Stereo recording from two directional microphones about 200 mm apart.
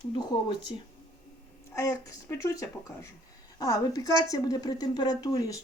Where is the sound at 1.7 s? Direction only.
15° left (ahead or behind).